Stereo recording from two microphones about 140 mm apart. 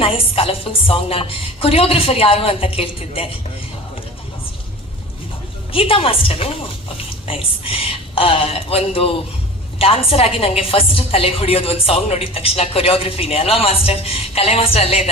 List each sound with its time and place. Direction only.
0.0 s a woman's voice: 40° left (ahead or behind)
5.7 s a woman's voice: 40° left (ahead or behind)